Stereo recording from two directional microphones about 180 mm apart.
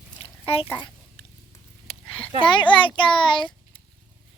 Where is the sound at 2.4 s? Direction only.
25° left (ahead or behind).